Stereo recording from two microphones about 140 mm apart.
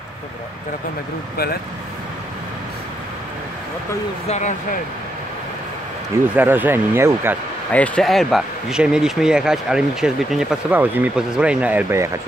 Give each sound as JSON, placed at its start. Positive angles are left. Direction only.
{"t": 4.3, "sound": "speech", "side_deg": 60}
{"t": 6.3, "sound": "speech", "side_deg": -15}
{"t": 7.7, "sound": "speech", "side_deg": 10}